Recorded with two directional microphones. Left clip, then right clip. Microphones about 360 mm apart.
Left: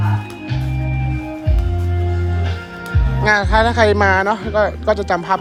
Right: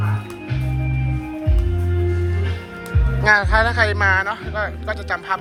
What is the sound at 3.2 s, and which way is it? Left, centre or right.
A woman's voice, centre.